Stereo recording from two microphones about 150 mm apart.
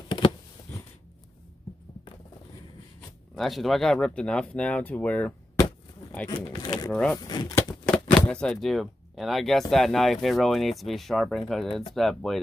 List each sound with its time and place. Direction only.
3.3 s speech: centre (ahead or behind)
6.6 s speech: 25° left (ahead or behind)
6.9 s speech: 5° left (ahead or behind)
7.2 s speech: 25° left (ahead or behind)
7.5 s speech: 5° left (ahead or behind)